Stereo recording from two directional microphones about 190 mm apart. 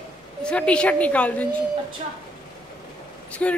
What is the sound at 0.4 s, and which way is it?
A woman's voice, 5° left (ahead or behind).